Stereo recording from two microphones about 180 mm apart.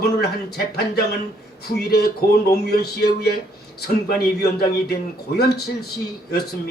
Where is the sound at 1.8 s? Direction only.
60° left (ahead or behind).